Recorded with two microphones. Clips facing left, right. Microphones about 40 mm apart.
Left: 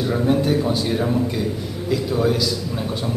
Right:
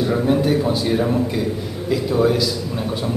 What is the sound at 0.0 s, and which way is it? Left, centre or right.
A man's voice, centre.